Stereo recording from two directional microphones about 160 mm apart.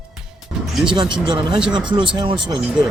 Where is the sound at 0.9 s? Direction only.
30° right (ahead or behind).